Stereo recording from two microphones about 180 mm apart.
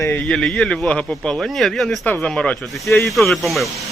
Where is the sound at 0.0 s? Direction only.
5° left (ahead or behind).